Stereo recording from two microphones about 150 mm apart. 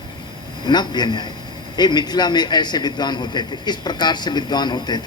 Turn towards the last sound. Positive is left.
turn(degrees=30)  # may be behind; listen again after turning